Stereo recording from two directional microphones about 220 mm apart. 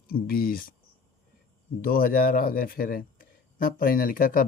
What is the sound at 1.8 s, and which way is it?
Speech, 40° left (ahead or behind).